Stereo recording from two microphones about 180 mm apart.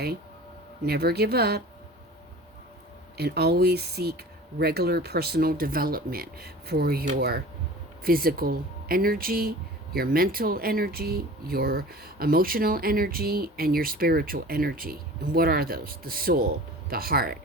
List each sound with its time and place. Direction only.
0.9 s speech: 60° right (ahead or behind)
3.2 s speech: 65° right (ahead or behind)